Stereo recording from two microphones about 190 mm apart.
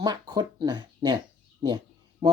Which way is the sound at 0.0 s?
20° right (ahead or behind).